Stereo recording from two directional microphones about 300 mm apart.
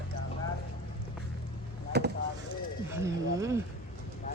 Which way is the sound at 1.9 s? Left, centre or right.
Right.